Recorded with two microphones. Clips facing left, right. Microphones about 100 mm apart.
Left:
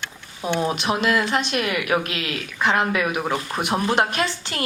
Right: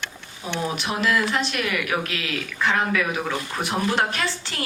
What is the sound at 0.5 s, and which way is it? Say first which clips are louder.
A woman's voice: left 5 dB; 20° left (ahead or behind).